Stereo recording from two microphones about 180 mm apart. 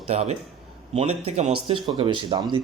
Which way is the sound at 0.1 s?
35° right (ahead or behind).